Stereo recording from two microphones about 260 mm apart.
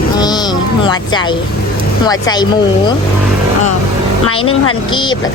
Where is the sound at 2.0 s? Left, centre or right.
Centre.